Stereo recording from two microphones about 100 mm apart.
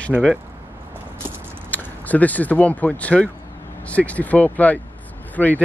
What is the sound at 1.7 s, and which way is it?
Speech, 15° left (ahead or behind).